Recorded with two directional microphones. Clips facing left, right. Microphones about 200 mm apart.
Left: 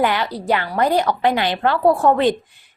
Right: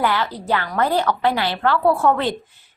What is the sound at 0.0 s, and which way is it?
A woman's voice, 15° left (ahead or behind).